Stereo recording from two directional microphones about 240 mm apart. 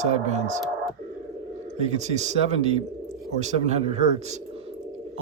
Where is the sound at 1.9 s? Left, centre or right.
Right.